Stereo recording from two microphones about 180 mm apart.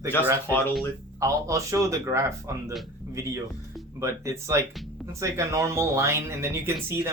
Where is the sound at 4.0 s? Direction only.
15° right (ahead or behind).